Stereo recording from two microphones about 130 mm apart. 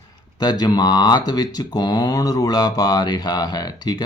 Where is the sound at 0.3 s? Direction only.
30° left (ahead or behind).